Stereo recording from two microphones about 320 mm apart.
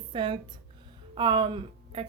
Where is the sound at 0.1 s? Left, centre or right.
Centre.